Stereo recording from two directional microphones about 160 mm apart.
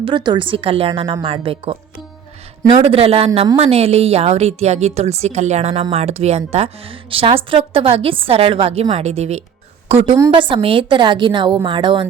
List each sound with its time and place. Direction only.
0.0 s a woman's voice: 30° right (ahead or behind)
2.7 s a woman's voice: 40° right (ahead or behind)